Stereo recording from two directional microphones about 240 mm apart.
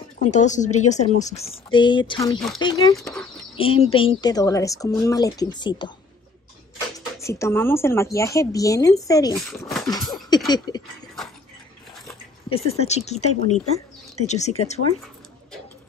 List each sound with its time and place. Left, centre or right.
0.2 s speech: left
2.3 s speech: centre
2.6 s speech: centre
7.2 s speech: centre
9.5 s a sound: centre
10.7 s speech: centre
12.4 s speech: left